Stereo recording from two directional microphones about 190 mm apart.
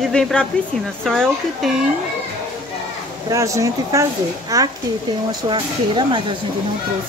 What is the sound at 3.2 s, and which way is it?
Speech, 15° right (ahead or behind).